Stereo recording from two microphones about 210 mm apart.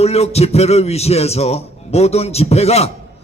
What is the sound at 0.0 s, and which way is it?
A man's voice, 30° left (ahead or behind).